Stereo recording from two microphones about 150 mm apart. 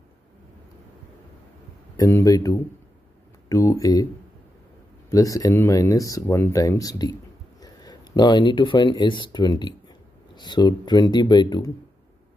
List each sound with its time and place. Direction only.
2.0 s speech: 20° left (ahead or behind)
5.1 s speech: 20° left (ahead or behind)